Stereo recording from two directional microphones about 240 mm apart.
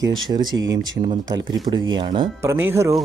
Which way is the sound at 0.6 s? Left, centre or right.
Right.